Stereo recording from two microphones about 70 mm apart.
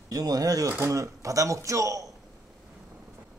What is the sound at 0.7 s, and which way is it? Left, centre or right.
Speech, right.